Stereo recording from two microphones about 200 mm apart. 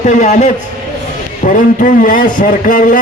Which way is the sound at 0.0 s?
40° left (ahead or behind).